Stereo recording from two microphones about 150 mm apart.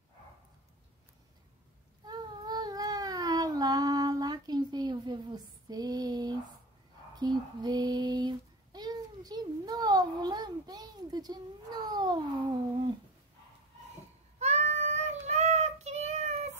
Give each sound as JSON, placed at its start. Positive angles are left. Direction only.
{"t": 2.0, "sound": "cat", "side_deg": -25}
{"t": 7.2, "sound": "child singing", "side_deg": -25}
{"t": 14.4, "sound": "child singing", "side_deg": -50}